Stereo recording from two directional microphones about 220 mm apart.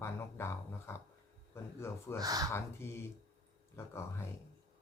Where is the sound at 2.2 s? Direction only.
15° right (ahead or behind).